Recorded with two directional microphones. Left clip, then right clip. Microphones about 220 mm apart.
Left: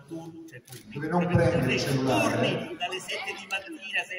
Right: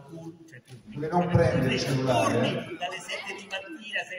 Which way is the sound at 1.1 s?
25° left (ahead or behind).